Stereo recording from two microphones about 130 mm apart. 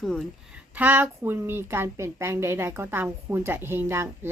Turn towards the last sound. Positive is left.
turn(degrees=-20)  # may be behind; listen again after turning